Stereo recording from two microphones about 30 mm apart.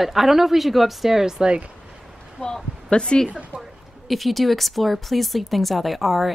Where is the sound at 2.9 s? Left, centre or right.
Left.